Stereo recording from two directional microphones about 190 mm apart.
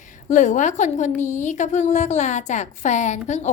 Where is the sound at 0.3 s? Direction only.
40° left (ahead or behind).